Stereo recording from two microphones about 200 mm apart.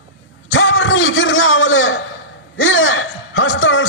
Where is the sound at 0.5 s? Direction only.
70° left (ahead or behind).